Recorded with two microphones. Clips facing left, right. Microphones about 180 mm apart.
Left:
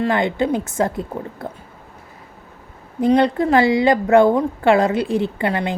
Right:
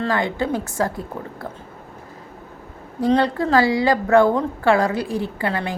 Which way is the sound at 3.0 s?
20° left (ahead or behind).